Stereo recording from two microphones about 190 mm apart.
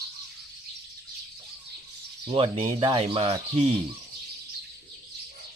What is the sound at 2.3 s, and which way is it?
Speech, 30° right (ahead or behind).